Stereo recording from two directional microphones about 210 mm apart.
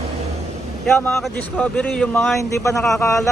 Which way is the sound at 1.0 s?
10° left (ahead or behind).